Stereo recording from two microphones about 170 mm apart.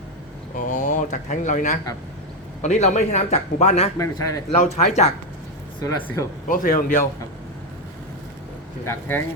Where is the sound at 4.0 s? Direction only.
20° left (ahead or behind).